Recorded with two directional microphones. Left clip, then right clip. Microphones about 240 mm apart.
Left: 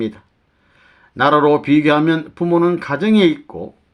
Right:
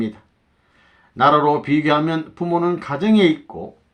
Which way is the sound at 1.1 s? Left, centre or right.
Left.